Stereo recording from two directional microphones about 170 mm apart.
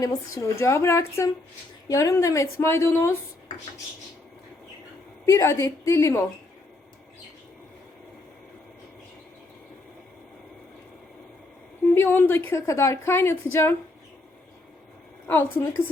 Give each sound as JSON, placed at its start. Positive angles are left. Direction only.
{"t": 0.0, "sound": "a woman's voice", "side_deg": 20}
{"t": 5.2, "sound": "a woman's voice", "side_deg": 15}
{"t": 11.9, "sound": "a woman's voice", "side_deg": 10}
{"t": 15.3, "sound": "a woman's voice", "side_deg": 15}